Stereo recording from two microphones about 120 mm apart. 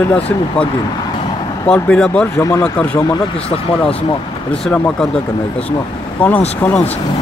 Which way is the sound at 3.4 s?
50° left (ahead or behind).